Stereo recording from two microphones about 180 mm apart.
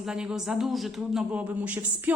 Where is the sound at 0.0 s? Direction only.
5° right (ahead or behind).